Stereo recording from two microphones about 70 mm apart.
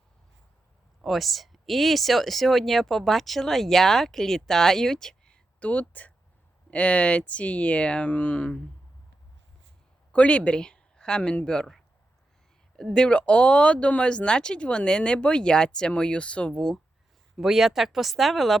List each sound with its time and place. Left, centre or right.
1.0 s speech: centre; by 5.8 s left
5.9 s a sound: left
6.7 s speech: centre
10.1 s speech: centre
17.3 s speech: centre